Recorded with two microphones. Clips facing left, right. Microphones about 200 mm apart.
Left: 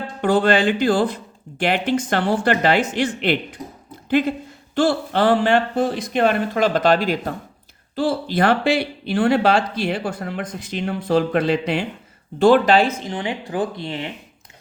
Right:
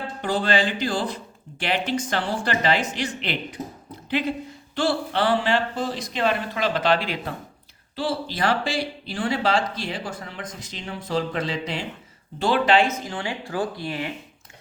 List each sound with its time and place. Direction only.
0.2 s speech: 55° left (ahead or behind)
4.7 s speech: 50° left (ahead or behind)
12.4 s speech: 50° left (ahead or behind)
13.0 s speech: 20° left (ahead or behind)